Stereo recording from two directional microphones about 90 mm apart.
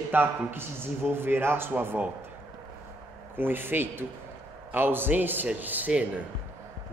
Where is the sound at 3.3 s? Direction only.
25° right (ahead or behind).